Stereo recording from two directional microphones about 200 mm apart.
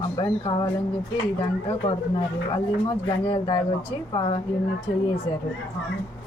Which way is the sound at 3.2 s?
25° left (ahead or behind).